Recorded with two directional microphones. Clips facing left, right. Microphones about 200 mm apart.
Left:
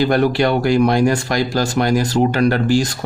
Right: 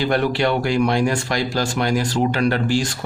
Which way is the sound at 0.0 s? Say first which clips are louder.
Left 4 dB; 40° left (ahead or behind).